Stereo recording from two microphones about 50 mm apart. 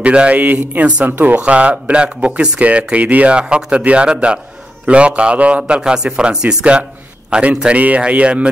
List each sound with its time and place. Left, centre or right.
0.0 s a man's voice: right
0.4 s speech: right
1.0 s speech: right
1.3 s a man's voice: right